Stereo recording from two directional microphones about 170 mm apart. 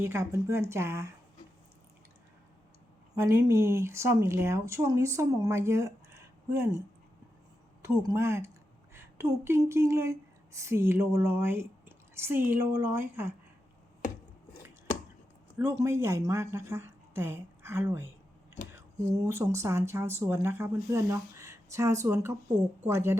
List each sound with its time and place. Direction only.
0.0 s speech: 15° right (ahead or behind)
3.2 s speech: 15° right (ahead or behind)
8.0 s speech: 15° right (ahead or behind)
15.8 s speech: 15° right (ahead or behind)